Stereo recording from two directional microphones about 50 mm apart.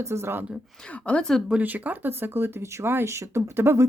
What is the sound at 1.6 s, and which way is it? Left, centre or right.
Speech, right.